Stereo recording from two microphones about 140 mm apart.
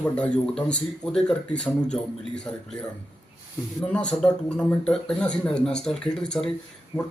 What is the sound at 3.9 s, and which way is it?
A man's voice, 10° left (ahead or behind).